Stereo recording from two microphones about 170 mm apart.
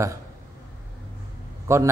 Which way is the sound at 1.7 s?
15° right (ahead or behind).